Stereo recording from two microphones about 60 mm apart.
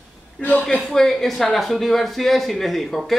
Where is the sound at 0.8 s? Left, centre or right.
Centre.